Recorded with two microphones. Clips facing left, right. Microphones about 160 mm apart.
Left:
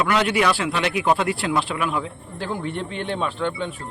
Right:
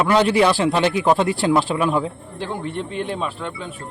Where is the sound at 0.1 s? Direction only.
30° right (ahead or behind).